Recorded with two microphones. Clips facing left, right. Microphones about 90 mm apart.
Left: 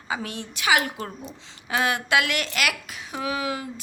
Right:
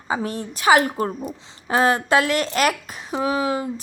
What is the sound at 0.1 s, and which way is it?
A woman's voice, 35° right (ahead or behind).